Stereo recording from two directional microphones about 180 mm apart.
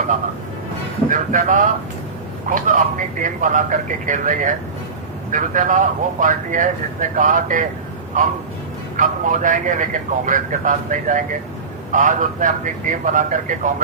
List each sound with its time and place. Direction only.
1.1 s speech: 45° right (ahead or behind)